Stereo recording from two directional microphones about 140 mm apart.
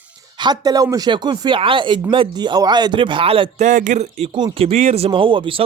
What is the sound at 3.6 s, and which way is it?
Speech, 65° right (ahead or behind).